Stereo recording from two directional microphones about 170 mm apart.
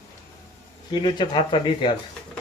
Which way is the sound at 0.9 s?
25° left (ahead or behind).